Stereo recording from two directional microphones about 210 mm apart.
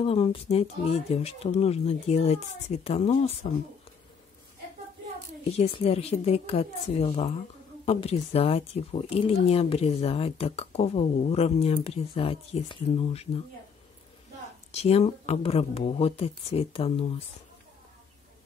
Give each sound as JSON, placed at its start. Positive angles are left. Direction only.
{"t": 0.0, "sound": "speech", "side_deg": 30}
{"t": 5.6, "sound": "speech", "side_deg": 30}
{"t": 14.7, "sound": "speech", "side_deg": 30}